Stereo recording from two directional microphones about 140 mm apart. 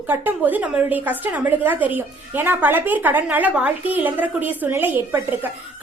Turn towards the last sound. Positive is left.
turn(degrees=-15)  # may be behind; listen again after turning